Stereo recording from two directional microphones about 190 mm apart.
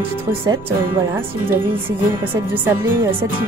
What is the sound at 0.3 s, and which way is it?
Speech, 10° right (ahead or behind).